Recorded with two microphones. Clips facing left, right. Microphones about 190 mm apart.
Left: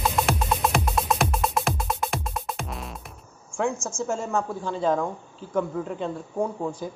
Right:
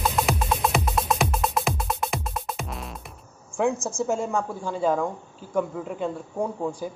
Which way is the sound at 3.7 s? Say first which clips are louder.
Right 3 dB; 35° right (ahead or behind).